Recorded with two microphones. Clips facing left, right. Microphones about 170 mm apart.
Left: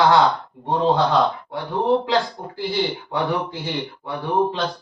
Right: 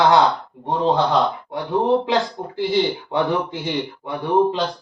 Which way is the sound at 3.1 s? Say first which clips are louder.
Right 3 dB; 20° right (ahead or behind).